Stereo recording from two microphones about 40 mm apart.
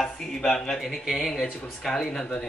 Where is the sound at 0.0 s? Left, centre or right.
Centre.